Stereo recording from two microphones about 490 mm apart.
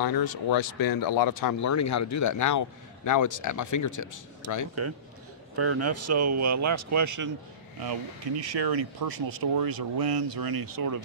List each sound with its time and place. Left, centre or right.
0.0 s speech: left
5.6 s speech: right
8.4 s speech: right